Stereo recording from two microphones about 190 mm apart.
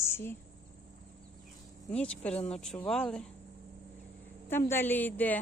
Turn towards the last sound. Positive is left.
turn(degrees=10)  # may be behind; listen again after turning